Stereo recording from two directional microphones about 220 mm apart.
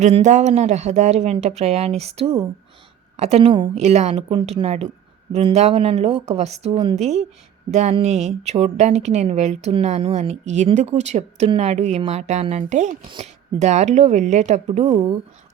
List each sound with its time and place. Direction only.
0.0 s a woman's voice: 35° right (ahead or behind)